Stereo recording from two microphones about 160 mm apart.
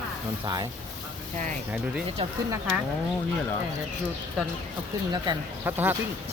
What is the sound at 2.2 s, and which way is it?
Speech, 35° right (ahead or behind).